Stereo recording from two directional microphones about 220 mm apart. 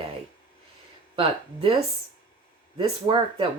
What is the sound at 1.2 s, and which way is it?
Speech, 25° right (ahead or behind).